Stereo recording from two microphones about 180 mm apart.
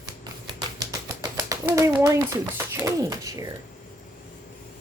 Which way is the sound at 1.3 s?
15° right (ahead or behind).